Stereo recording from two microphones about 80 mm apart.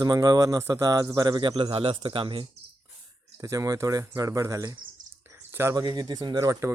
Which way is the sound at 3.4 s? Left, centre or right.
Right.